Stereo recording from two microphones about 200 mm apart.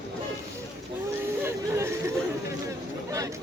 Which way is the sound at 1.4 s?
15° right (ahead or behind).